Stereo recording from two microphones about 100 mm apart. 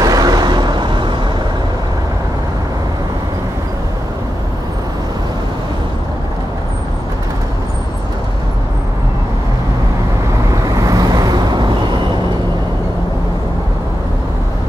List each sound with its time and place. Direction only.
0.0 s vehicle: 40° right (ahead or behind)
10.9 s waves: 40° right (ahead or behind)